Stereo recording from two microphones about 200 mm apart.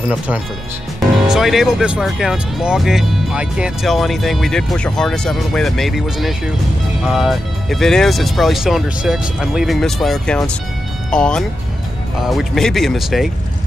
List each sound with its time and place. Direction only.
1.2 s speech: centre (ahead or behind)